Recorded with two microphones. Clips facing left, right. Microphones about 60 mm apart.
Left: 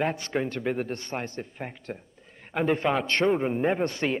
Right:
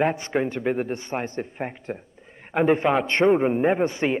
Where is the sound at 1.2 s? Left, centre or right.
Right; by 4.1 s centre.